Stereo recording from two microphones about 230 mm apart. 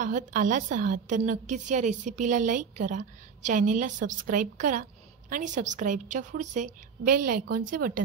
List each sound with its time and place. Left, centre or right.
0.0 s a woman's voice: right